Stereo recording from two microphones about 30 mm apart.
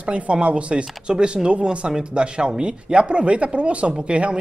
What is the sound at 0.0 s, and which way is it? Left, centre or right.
Speech, right.